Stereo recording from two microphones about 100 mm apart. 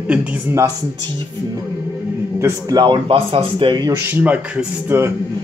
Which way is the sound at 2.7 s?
45° right (ahead or behind).